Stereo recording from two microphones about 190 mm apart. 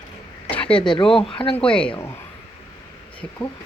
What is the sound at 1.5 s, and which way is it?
Speech, 5° left (ahead or behind).